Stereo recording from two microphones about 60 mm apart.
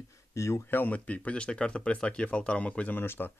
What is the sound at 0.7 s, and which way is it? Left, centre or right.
Speech, left.